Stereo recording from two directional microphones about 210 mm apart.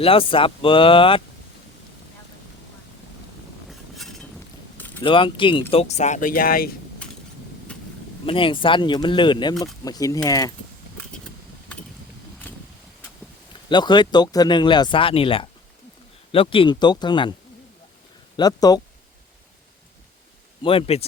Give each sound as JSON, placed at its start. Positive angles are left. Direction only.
{"t": 0.0, "sound": "speech", "side_deg": 25}
{"t": 3.7, "sound": "a sound", "side_deg": 0}
{"t": 5.0, "sound": "speech", "side_deg": 25}
{"t": 8.3, "sound": "speech", "side_deg": 25}
{"t": 12.5, "sound": "vehicle", "side_deg": 10}
{"t": 13.7, "sound": "speech", "side_deg": 20}
{"t": 18.3, "sound": "speech", "side_deg": 20}
{"t": 20.6, "sound": "speech", "side_deg": 25}